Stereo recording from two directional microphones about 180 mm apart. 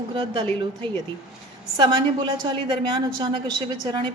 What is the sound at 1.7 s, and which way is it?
A woman's voice, 25° right (ahead or behind).